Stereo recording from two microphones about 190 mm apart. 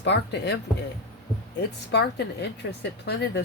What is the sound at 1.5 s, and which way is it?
Speech, 60° left (ahead or behind).